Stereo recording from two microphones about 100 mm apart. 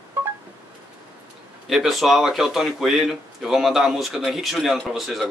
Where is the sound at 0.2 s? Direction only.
20° right (ahead or behind).